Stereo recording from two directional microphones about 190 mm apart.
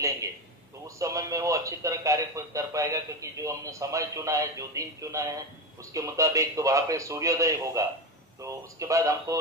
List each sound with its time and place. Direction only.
0.8 s speech: 15° right (ahead or behind)